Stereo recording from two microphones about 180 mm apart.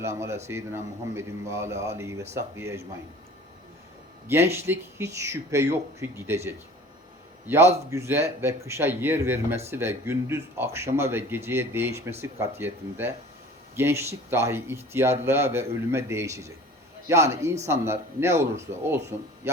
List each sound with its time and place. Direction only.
0.0 s speech: 15° right (ahead or behind)
4.3 s speech: 15° right (ahead or behind)